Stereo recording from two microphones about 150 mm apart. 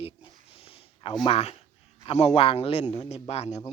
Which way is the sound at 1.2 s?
40° left (ahead or behind).